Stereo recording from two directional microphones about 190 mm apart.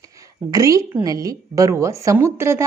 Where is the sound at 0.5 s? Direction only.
15° right (ahead or behind).